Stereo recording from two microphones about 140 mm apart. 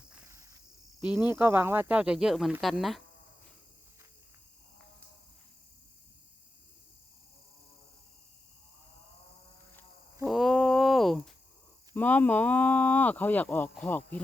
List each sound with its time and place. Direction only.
0.3 s cricket: 20° right (ahead or behind)
1.1 s speech: 15° right (ahead or behind)
10.2 s a sound: centre (ahead or behind)
11.9 s speech: 10° left (ahead or behind)